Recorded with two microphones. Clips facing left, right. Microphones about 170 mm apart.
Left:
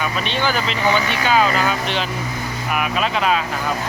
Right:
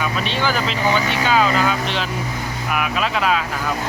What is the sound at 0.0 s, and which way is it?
Speech, centre (ahead or behind).